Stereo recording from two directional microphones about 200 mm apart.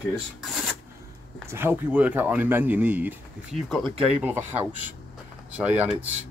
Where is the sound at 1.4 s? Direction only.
10° right (ahead or behind).